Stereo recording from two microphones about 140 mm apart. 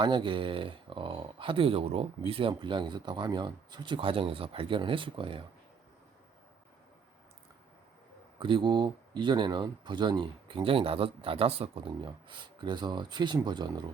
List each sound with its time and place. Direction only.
0.0 s speech: 35° right (ahead or behind)
8.4 s speech: 35° right (ahead or behind)